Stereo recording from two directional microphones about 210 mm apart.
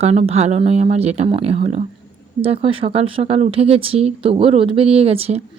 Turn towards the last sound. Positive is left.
turn(degrees=-30)  # may be behind; listen again after turning